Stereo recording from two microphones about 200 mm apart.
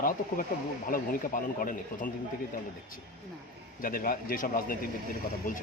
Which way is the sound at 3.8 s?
45° left (ahead or behind).